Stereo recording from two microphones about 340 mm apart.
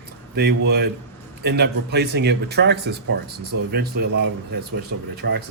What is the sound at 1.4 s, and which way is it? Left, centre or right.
Speech, right.